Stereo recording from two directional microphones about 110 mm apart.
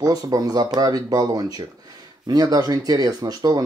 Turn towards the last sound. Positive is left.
turn(degrees=-35)  # may be behind; listen again after turning